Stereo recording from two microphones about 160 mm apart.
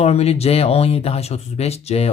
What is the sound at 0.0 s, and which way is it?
Speech, 40° left (ahead or behind).